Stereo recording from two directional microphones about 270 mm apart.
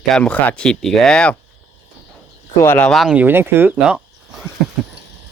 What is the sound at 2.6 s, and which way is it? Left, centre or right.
Speech, centre.